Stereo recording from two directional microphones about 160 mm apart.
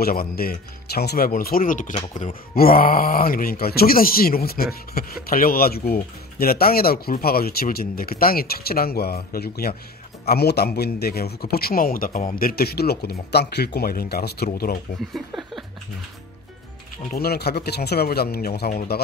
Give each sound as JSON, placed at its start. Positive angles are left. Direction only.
{"t": 0.0, "sound": "speech", "side_deg": 70}
{"t": 10.2, "sound": "speech", "side_deg": 85}
{"t": 15.0, "sound": "speech", "side_deg": 0}
{"t": 17.1, "sound": "speech", "side_deg": 75}